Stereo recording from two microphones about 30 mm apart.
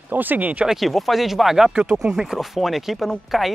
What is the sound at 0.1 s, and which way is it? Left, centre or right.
Speech, right.